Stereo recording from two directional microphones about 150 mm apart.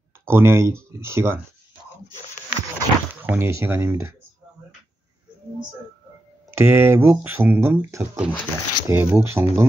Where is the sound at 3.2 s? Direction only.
15° right (ahead or behind).